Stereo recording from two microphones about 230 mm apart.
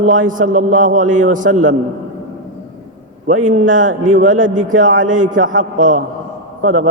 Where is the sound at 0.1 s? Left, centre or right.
Right.